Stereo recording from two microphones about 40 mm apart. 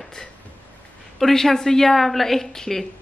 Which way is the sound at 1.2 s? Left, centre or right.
Centre.